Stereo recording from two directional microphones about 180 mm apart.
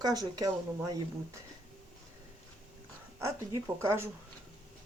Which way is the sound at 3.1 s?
20° right (ahead or behind).